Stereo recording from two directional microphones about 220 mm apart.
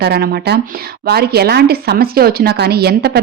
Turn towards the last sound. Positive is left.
turn(degrees=-45)  # may be behind; listen again after turning